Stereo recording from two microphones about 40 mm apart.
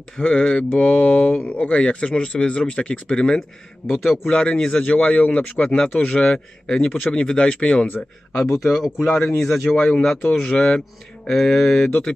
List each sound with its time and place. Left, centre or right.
0.2 s speech: left
1.8 s speech: left
3.8 s a man's voice: left
4.4 s speech: left
6.3 s speech: left
8.6 s speech: centre
9.0 s a man's voice: centre
10.2 s speech: left
11.2 s a man's voice: centre